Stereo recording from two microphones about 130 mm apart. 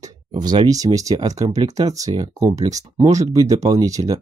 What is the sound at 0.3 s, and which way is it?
Speech, 35° right (ahead or behind).